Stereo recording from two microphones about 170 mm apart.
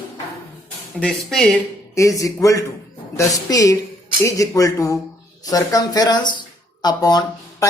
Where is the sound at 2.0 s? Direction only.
20° left (ahead or behind).